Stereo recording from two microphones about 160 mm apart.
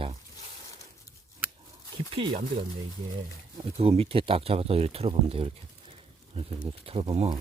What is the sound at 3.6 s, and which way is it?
Speech, 40° right (ahead or behind).